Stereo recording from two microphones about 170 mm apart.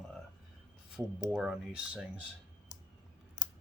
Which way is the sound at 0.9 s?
Centre (ahead or behind).